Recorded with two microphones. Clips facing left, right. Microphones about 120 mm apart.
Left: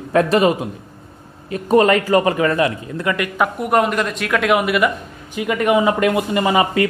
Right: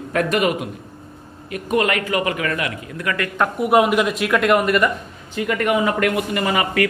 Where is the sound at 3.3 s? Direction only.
Centre (ahead or behind).